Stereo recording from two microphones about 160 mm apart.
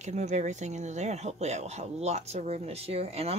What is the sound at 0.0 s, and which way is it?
Speech, 45° right (ahead or behind).